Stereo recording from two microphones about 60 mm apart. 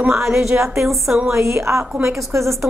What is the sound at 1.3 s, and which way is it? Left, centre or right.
A woman's voice, right.